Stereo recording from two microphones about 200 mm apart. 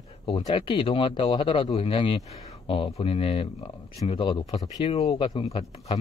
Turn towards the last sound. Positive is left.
turn(degrees=25)  # may be behind; listen again after turning